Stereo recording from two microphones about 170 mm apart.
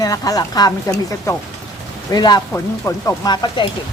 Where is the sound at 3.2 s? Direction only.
25° left (ahead or behind).